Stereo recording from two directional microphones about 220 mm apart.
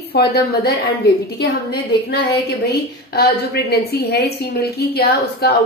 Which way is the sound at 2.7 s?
50° left (ahead or behind).